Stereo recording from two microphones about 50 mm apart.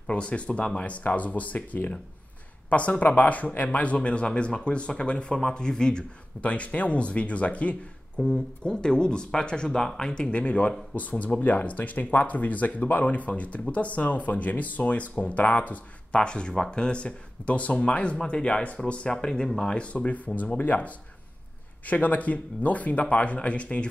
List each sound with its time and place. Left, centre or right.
0.0 s speech: left
6.4 s speech: left
8.3 s speech: centre
19.8 s speech: left